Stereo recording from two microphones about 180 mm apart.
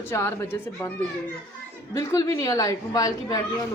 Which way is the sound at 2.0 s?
20° left (ahead or behind).